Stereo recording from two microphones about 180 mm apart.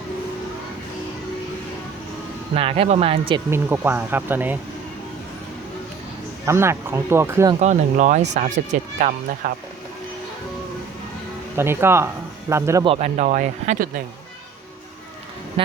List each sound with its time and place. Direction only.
2.6 s speech: 35° right (ahead or behind)
3.5 s speech: 10° right (ahead or behind)
6.4 s speech: 15° right (ahead or behind)
7.6 s speech: 40° right (ahead or behind)
11.5 s speech: 15° right (ahead or behind)
12.8 s speech: 35° right (ahead or behind)
15.6 s a sound: 30° right (ahead or behind)